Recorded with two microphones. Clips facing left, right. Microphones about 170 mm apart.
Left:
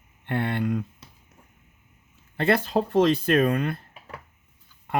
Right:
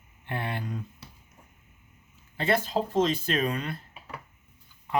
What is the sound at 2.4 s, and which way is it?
Speech, 60° left (ahead or behind).